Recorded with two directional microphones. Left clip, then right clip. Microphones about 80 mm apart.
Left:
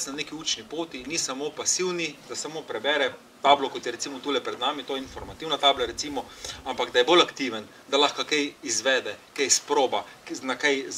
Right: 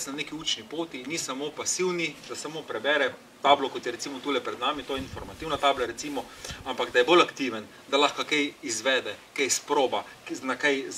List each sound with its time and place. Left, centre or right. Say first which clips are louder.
0.0 s speech: left 1 dB; centre